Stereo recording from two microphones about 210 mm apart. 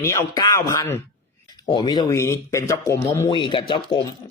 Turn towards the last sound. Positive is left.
turn(degrees=20)  # may be behind; listen again after turning